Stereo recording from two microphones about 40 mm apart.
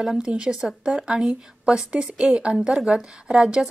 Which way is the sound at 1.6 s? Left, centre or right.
Centre.